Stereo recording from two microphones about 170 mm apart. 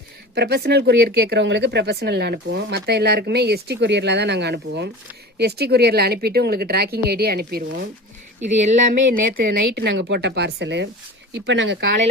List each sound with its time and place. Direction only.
0.3 s speech: 70° right (ahead or behind)
8.5 s speech: 45° right (ahead or behind); by 11.9 s 90° right